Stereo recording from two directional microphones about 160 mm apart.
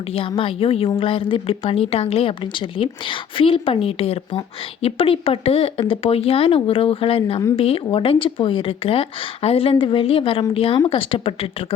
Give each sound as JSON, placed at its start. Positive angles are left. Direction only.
{"t": 0.1, "sound": "a woman's voice", "side_deg": 35}